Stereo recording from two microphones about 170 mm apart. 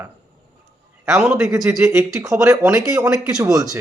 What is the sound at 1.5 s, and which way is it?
Speech, 20° right (ahead or behind).